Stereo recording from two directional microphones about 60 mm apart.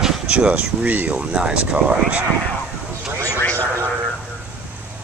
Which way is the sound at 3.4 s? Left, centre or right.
Left.